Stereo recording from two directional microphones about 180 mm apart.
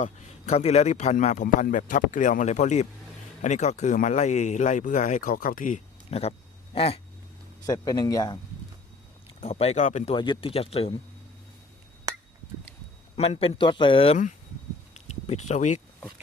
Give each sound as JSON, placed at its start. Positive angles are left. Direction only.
{"t": 0.0, "sound": "a man's voice", "side_deg": 40}
{"t": 7.6, "sound": "speech", "side_deg": 20}
{"t": 9.4, "sound": "a man's voice", "side_deg": 35}
{"t": 10.2, "sound": "a man's voice", "side_deg": 30}
{"t": 13.1, "sound": "a man's voice", "side_deg": 35}
{"t": 14.9, "sound": "a sound", "side_deg": 40}